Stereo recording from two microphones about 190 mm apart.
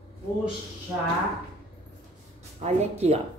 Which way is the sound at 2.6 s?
35° right (ahead or behind).